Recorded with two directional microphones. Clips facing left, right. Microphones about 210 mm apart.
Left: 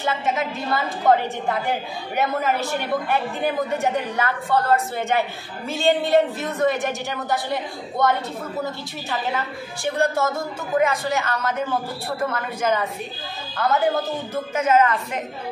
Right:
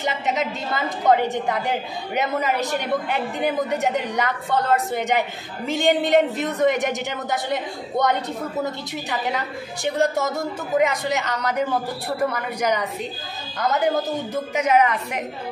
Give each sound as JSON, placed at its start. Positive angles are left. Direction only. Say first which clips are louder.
{"t": 0.0, "sound": "a woman's voice", "louder": "even", "side_deg": -20}